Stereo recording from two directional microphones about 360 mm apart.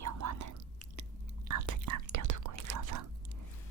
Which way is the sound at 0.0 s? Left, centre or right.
Right.